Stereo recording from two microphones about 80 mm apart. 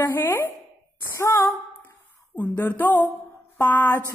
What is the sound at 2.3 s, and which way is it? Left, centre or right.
A woman's voice, left.